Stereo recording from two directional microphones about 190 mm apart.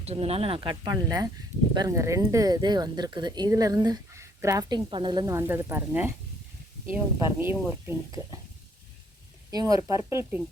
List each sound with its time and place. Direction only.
0.0 s speech: 30° right (ahead or behind); by 7.9 s 10° right (ahead or behind)
9.5 s speech: 20° right (ahead or behind)